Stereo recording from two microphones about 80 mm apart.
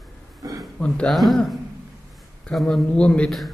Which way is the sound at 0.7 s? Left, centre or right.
Centre.